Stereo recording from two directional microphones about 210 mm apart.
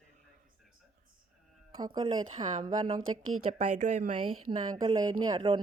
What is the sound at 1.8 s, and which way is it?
A woman's voice, 25° right (ahead or behind).